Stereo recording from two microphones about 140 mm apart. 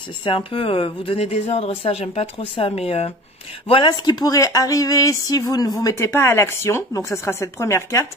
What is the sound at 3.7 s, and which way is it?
Speech, 35° left (ahead or behind).